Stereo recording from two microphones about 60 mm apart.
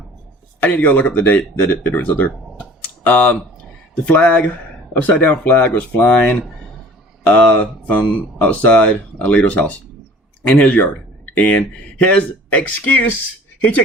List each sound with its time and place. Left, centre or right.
0.6 s speech: left